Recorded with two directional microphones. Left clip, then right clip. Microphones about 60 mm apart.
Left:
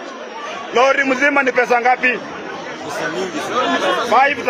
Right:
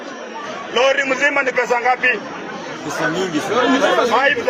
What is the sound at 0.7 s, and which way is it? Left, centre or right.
A man's voice, left.